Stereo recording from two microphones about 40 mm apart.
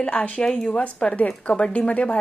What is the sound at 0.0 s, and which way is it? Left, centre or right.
Speech, left.